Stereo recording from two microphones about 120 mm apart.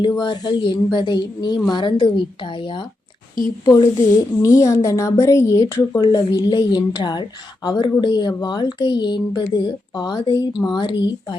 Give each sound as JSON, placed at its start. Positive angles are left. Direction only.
{"t": 0.0, "sound": "a woman's voice", "side_deg": 40}
{"t": 3.7, "sound": "a woman's voice", "side_deg": 30}
{"t": 6.0, "sound": "a woman's voice", "side_deg": 35}